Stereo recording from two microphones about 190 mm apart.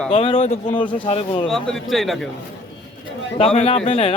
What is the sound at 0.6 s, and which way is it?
Speech, 10° left (ahead or behind).